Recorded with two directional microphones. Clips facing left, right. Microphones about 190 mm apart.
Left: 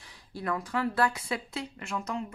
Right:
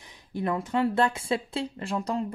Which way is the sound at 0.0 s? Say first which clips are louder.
Right 6 dB; 20° right (ahead or behind).